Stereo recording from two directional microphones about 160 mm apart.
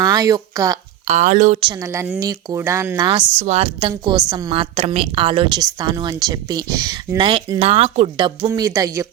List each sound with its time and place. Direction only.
0.0 s speech: 25° right (ahead or behind)
1.0 s speech: 45° right (ahead or behind)
2.1 s speech: 20° right (ahead or behind)
3.3 s a woman's voice: 45° right (ahead or behind)
8.5 s speech: 20° right (ahead or behind)